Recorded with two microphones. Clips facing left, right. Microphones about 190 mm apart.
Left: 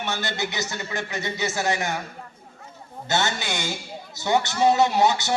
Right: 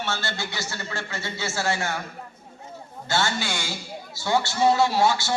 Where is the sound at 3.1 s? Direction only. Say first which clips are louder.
Even; 20° left (ahead or behind).